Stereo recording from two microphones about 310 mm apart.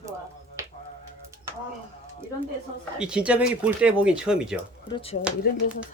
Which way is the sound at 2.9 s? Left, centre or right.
Centre.